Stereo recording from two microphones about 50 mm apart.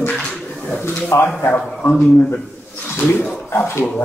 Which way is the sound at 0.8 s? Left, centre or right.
Left.